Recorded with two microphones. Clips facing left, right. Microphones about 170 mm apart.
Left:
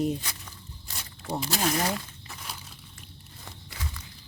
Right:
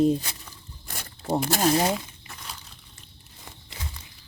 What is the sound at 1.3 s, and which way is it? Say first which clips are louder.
Speech: right 6 dB; 50° right (ahead or behind).